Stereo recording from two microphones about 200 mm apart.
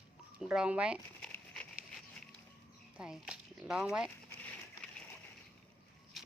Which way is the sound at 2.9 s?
5° right (ahead or behind).